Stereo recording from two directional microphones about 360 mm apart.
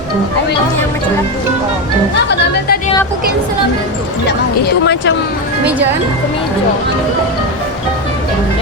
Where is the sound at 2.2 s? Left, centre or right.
Left.